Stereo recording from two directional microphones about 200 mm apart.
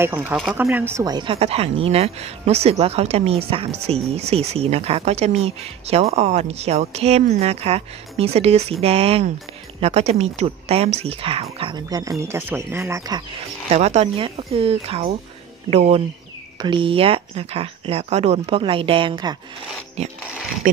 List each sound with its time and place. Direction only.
0.0 s speech: 10° right (ahead or behind)
13.7 s speech: 30° right (ahead or behind)
20.6 s speech: 45° right (ahead or behind)